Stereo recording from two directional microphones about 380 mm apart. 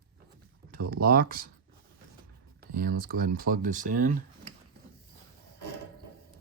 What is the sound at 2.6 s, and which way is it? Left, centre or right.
Speech, right.